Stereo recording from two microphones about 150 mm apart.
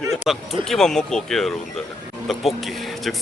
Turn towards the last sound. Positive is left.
turn(degrees=0)  # may be behind; listen again after turning